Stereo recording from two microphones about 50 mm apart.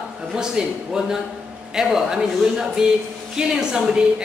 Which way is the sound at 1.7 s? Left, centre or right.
Centre.